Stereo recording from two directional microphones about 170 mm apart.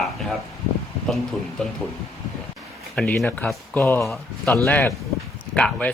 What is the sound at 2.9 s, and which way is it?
Speech, 5° left (ahead or behind).